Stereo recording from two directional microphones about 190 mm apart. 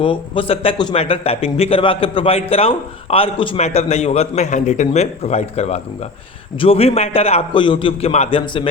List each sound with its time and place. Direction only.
0.0 s a man's voice: 25° left (ahead or behind)